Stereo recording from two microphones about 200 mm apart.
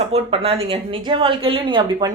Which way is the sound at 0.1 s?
30° right (ahead or behind).